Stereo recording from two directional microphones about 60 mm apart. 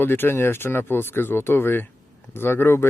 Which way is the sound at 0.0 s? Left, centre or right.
Left.